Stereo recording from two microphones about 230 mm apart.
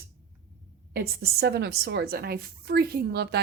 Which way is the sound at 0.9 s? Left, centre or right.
Right.